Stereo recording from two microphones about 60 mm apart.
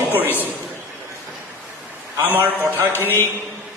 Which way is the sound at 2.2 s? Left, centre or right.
Right.